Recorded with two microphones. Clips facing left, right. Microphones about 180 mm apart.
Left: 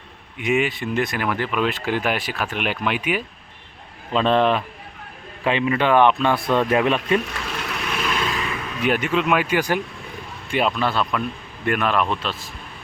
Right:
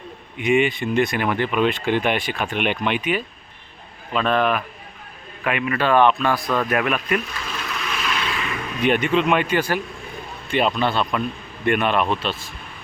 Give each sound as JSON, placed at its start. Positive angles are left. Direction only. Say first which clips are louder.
{"t": 0.3, "sound": "speech", "louder": "right 3 dB", "side_deg": 5}
{"t": 4.1, "sound": "speech", "louder": "left 2 dB", "side_deg": 25}
{"t": 7.3, "sound": "a sound", "louder": "left 1 dB", "side_deg": 65}
{"t": 8.8, "sound": "speech", "louder": "right 2 dB", "side_deg": 5}
{"t": 10.8, "sound": "speech", "louder": "right 1 dB", "side_deg": 0}